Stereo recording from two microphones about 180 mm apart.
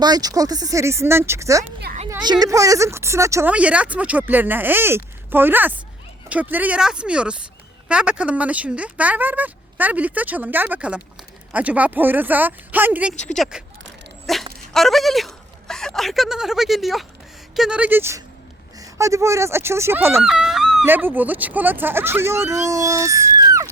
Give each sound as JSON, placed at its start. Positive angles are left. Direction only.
{"t": 0.0, "sound": "speech", "side_deg": -20}